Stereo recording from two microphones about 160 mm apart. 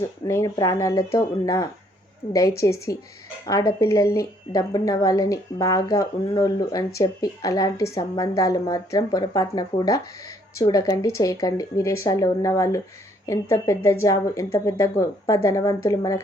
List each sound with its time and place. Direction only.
0.0 s speech: 20° left (ahead or behind)